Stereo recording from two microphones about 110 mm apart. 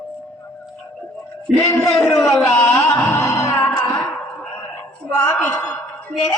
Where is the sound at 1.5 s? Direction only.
5° right (ahead or behind).